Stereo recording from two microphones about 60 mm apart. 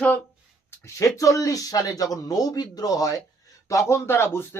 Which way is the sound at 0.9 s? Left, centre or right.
Left.